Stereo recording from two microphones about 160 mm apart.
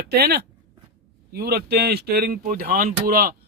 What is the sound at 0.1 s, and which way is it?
Speech, 85° right.